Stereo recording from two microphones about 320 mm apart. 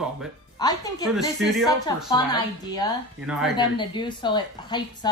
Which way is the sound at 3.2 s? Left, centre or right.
Centre.